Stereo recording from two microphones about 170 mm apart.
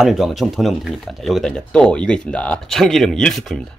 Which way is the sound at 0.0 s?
Centre (ahead or behind).